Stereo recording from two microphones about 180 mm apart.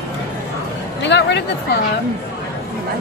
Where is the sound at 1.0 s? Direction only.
75° left (ahead or behind).